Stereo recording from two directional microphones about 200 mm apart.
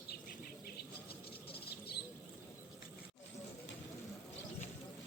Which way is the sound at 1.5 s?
55° left (ahead or behind).